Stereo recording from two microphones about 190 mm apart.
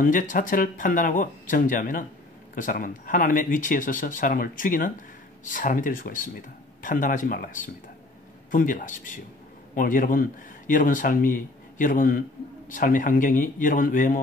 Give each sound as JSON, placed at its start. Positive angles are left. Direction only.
{"t": 0.0, "sound": "a man's voice", "side_deg": 45}